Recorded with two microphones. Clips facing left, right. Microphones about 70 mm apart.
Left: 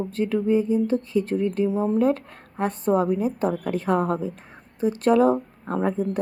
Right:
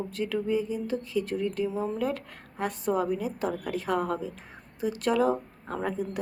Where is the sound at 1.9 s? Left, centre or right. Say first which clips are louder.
Left 9 dB; left.